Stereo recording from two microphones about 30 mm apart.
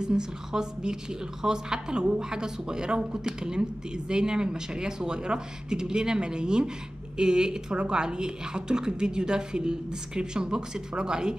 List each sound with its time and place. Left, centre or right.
0.0 s a woman's voice: right